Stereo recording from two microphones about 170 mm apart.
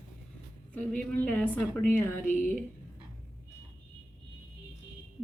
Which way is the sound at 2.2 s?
55° left (ahead or behind).